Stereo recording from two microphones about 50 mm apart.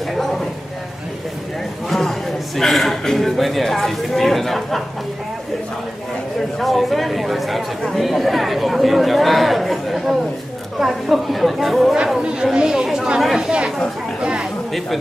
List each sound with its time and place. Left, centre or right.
0.1 s a sound: centre
1.9 s speech: centre
6.6 s speech: centre
12.5 s chatter: centre